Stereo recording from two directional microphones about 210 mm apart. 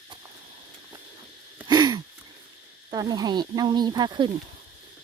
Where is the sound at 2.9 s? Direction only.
20° right (ahead or behind).